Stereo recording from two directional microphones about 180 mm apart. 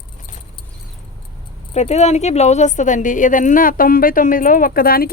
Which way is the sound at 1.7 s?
40° left (ahead or behind).